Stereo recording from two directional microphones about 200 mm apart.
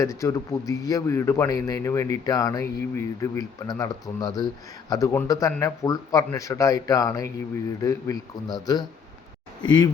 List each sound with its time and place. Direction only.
0.0 s a man's voice: 15° left (ahead or behind)